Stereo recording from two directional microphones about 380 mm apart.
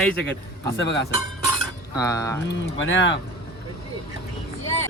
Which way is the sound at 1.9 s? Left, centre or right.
Centre.